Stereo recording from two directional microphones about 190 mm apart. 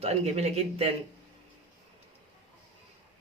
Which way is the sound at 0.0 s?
35° right (ahead or behind).